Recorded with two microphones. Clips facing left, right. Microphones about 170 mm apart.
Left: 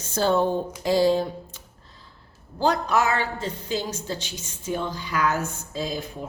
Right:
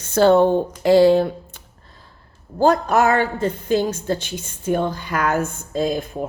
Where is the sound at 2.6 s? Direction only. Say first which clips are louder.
Right 6 dB; 50° right (ahead or behind).